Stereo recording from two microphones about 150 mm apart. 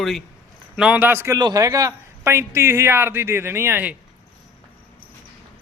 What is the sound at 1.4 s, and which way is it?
A man's voice, 25° right (ahead or behind).